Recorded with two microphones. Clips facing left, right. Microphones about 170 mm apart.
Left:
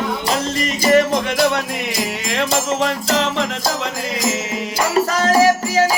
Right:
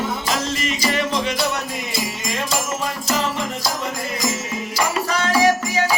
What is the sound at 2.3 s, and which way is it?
Music, 80° left.